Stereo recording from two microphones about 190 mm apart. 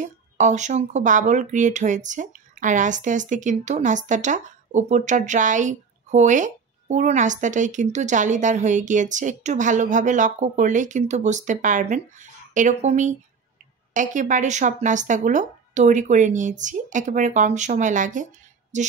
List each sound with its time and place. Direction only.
0.0 s speech: 40° right (ahead or behind)